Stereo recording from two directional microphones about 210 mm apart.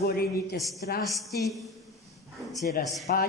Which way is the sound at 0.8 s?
50° left (ahead or behind).